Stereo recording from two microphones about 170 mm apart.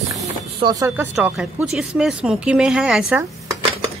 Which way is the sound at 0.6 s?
25° right (ahead or behind).